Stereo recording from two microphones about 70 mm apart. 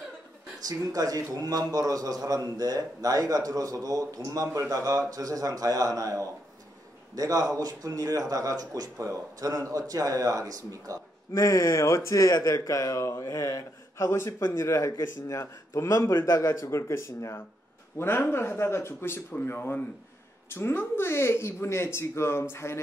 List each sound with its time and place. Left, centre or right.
0.7 s a man's voice: right
8.9 s a man's voice: right
11.3 s speech: left